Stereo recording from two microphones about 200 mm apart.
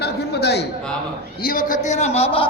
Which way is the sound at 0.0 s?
55° left (ahead or behind).